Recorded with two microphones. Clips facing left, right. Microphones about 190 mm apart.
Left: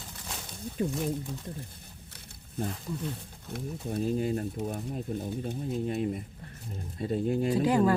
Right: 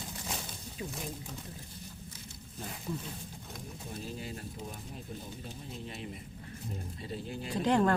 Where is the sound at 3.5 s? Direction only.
55° left (ahead or behind).